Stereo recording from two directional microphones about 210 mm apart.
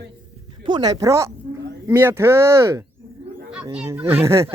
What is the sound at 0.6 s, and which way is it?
Speech, 20° right (ahead or behind).